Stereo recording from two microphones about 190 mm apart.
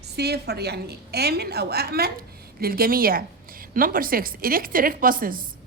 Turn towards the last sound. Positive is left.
turn(degrees=-50)  # may be behind; listen again after turning